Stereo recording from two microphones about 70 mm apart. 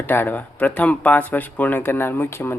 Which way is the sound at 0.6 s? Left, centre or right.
Centre.